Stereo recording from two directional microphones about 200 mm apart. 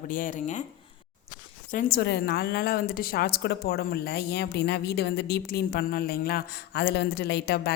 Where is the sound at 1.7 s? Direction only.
45° left (ahead or behind).